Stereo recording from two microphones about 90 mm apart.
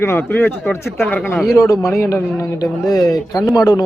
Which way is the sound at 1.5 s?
40° left (ahead or behind).